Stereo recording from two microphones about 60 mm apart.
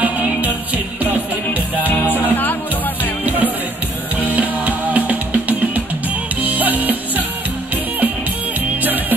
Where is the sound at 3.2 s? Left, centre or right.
Right.